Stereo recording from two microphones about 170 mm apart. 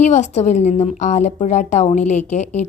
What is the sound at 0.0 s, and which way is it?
A woman's voice, 45° left (ahead or behind).